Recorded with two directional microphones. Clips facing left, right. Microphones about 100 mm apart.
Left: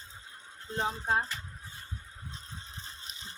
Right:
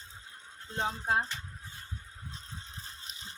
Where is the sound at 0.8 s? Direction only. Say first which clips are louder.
Left 1 dB; 5° left (ahead or behind).